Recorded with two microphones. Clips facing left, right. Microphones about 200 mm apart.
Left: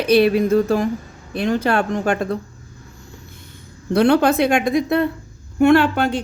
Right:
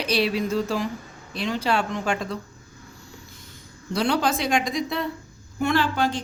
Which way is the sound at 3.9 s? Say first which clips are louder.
Left 9 dB; 60° left (ahead or behind).